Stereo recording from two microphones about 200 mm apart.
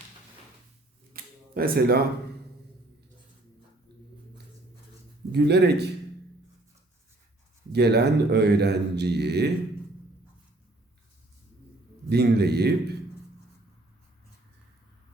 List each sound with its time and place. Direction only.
1.1 s camera: 45° right (ahead or behind)
5.3 s speech: 55° right (ahead or behind)
7.7 s speech: 55° right (ahead or behind)
12.0 s speech: 55° right (ahead or behind)